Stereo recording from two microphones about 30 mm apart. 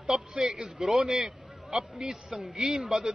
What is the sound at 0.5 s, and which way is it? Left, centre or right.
A man's voice, centre.